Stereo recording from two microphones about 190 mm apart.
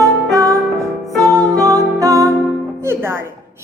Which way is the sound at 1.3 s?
20° right (ahead or behind).